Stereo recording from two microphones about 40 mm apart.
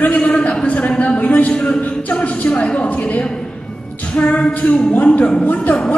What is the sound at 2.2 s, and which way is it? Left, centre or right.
A woman's voice, left.